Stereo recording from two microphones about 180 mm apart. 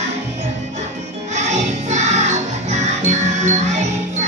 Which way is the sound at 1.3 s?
40° right (ahead or behind).